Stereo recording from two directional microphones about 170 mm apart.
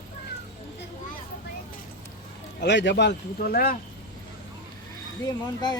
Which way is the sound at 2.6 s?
90° left.